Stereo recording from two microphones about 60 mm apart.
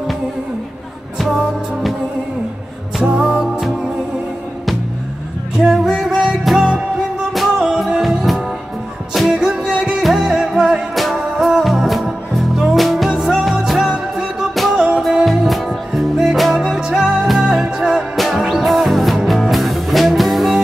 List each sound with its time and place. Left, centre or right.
1.1 s music: centre
3.0 s music: centre
5.6 s music: centre
7.3 s music: centre
9.4 s music: centre
10.0 s music: centre
14.5 s music: centre
14.8 s music: centre
15.2 s music: centre